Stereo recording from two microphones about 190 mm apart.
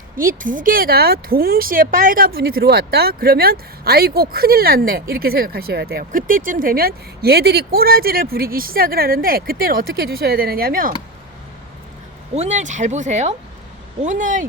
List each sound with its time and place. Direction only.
0.2 s speech: 45° right (ahead or behind)
12.3 s speech: 35° right (ahead or behind)